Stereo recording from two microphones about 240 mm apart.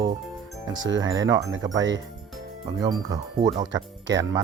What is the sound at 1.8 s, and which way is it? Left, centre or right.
Speech, right.